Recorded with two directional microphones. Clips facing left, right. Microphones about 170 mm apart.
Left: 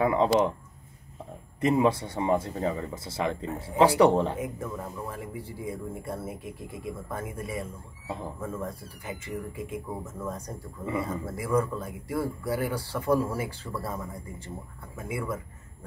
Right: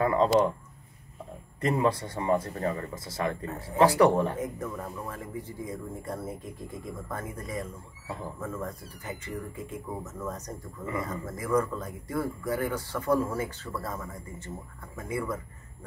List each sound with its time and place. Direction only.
0.0 s speech: 15° left (ahead or behind)
1.6 s speech: 20° left (ahead or behind)
4.4 s speech: 10° left (ahead or behind)